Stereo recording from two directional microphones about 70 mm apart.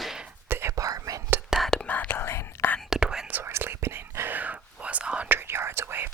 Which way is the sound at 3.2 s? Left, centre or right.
Right.